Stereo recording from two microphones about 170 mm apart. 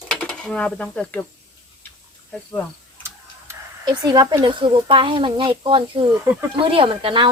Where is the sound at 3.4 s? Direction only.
25° right (ahead or behind).